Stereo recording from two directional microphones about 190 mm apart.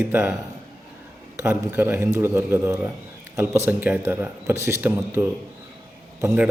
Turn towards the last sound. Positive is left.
turn(degrees=-5)  # may be behind; listen again after turning